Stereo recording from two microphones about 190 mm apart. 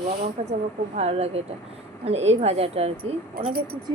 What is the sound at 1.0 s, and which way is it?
A woman's voice, 35° right (ahead or behind).